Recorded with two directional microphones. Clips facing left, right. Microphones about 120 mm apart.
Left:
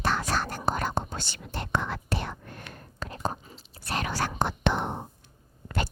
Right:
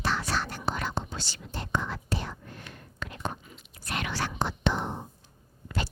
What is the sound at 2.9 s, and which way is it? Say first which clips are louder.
Whispering: left 3 dB; 35° left (ahead or behind).